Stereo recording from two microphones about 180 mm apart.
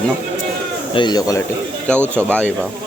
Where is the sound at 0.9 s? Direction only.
25° left (ahead or behind).